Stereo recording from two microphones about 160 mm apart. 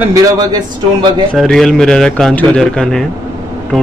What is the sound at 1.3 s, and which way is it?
A man's voice, 5° left (ahead or behind).